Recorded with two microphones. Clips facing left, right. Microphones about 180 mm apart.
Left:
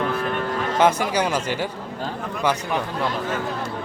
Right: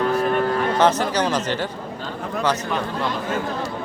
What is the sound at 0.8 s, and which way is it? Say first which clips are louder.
Speech: left 2 dB; 10° left (ahead or behind).